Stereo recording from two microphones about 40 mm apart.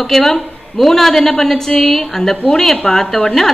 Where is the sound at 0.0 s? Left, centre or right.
Centre.